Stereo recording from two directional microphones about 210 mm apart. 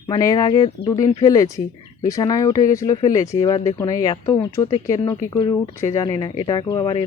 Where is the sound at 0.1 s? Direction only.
15° left (ahead or behind).